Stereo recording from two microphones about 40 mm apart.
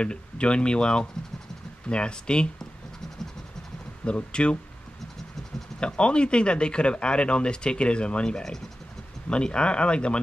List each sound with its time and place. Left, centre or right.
0.0 s speech: left
4.0 s speech: left
5.8 s speech: left